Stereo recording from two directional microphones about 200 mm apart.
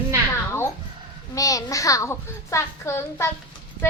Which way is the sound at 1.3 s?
15° left (ahead or behind).